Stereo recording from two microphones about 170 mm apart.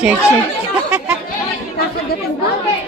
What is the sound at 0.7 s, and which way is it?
Speech, 5° right (ahead or behind).